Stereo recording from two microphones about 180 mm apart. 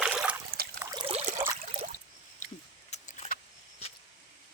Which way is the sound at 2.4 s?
45° left (ahead or behind).